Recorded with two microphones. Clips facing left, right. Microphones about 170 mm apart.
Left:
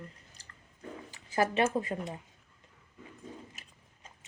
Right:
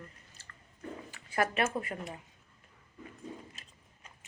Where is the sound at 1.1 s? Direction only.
20° left (ahead or behind).